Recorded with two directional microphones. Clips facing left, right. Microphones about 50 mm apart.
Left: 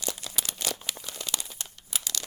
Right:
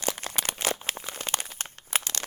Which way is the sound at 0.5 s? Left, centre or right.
Right.